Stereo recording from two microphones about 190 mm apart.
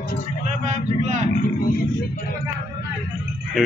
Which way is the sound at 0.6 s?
40° right (ahead or behind).